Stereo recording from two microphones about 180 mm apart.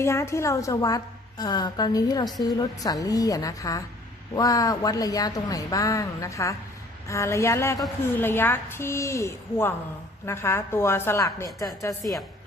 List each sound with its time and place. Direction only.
0.0 s a woman's voice: 15° left (ahead or behind)